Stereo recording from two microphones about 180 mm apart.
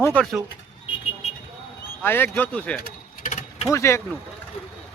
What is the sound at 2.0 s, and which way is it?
A man's voice, 10° left (ahead or behind).